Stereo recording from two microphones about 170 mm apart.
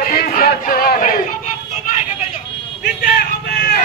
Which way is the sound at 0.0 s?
60° left (ahead or behind).